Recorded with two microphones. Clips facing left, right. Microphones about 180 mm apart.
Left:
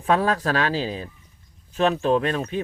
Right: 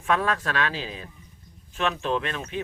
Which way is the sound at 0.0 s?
35° left (ahead or behind).